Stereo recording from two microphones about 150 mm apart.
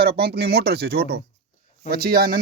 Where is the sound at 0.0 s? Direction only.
90° right.